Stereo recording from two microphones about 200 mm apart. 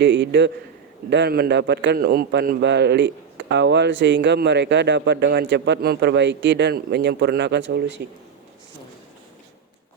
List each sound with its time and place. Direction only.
0.0 s a man's voice: 60° right (ahead or behind)